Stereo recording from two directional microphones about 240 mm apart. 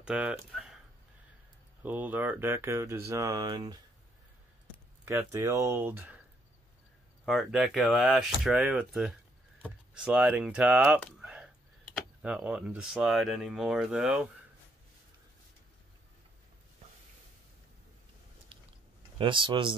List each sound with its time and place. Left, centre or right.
0.0 s speech: centre
1.8 s speech: centre
5.0 s speech: centre
7.2 s speech: centre
19.1 s speech: right